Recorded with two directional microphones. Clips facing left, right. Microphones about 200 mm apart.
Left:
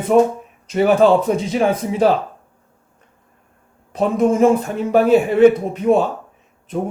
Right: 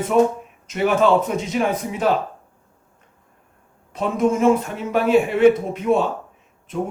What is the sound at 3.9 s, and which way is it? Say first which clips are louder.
Speech: left 4 dB; 35° left (ahead or behind).